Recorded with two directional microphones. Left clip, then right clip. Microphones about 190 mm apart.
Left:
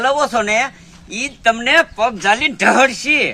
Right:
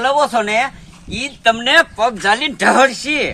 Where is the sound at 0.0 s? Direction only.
15° left (ahead or behind).